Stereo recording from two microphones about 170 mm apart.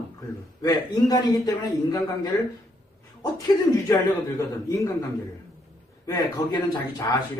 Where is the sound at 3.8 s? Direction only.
20° left (ahead or behind).